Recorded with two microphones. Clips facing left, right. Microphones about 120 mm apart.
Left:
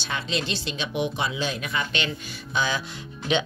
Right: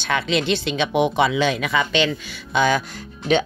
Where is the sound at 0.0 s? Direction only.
70° right (ahead or behind); by 2.0 s 90° right.